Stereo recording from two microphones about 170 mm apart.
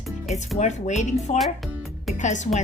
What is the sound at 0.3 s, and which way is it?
A woman's voice, 45° left (ahead or behind).